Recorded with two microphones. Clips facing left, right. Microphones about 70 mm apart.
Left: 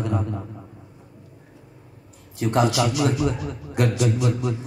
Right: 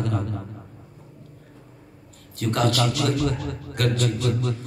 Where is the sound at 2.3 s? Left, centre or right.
Centre.